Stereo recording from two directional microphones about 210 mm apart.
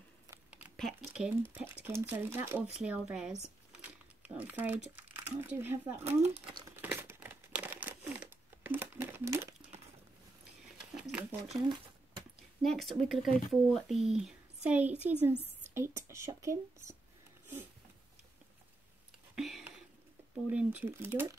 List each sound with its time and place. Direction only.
0.3 s crumpling: 5° right (ahead or behind)
1.5 s speech: 10° right (ahead or behind)
3.4 s a sound: 5° right (ahead or behind)
4.9 s speech: 10° right (ahead or behind)
6.2 s speech: 25° right (ahead or behind)
6.8 s crumpling: 10° right (ahead or behind)
12.6 s speech: centre (ahead or behind)
19.3 s a sound: centre (ahead or behind)
20.4 s speech: 5° right (ahead or behind)